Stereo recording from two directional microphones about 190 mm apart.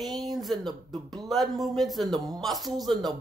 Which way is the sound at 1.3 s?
Centre (ahead or behind).